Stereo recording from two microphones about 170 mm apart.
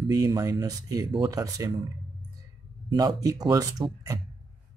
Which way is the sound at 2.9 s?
20° right (ahead or behind).